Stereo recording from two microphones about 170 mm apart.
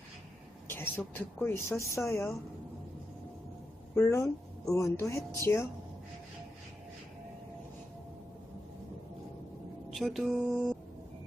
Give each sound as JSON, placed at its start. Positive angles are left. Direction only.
{"t": 0.7, "sound": "speech", "side_deg": 15}
{"t": 3.9, "sound": "speech", "side_deg": 15}
{"t": 9.9, "sound": "speech", "side_deg": 0}